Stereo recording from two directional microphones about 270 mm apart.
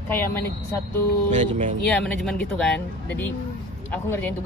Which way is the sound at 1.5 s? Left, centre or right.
Right.